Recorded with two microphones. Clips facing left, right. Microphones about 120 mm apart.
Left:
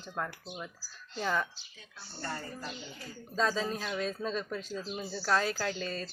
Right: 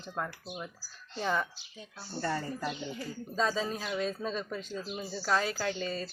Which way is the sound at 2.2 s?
90° right.